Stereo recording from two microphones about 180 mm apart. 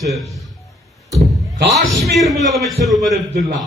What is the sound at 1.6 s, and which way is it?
Speech, 65° right (ahead or behind).